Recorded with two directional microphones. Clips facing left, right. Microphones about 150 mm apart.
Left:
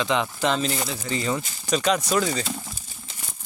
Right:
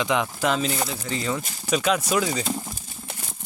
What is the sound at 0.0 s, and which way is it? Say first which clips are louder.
Speech: even; 10° right (ahead or behind).